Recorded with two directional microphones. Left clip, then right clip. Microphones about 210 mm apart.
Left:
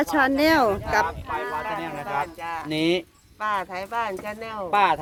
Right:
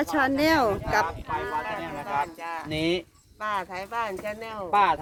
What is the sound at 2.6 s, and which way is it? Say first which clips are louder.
Speech: left 4 dB; 55° left (ahead or behind).